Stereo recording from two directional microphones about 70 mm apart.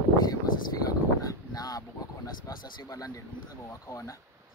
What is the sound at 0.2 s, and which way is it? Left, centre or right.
Speech, left.